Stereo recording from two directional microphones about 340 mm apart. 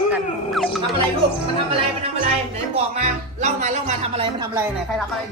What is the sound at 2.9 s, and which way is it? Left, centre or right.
Speech, centre.